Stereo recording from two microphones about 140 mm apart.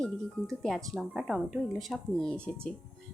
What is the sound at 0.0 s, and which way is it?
A woman's voice, 5° left (ahead or behind).